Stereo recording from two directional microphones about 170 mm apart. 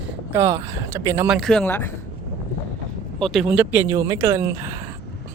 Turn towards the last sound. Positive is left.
turn(degrees=-15)  # may be behind; listen again after turning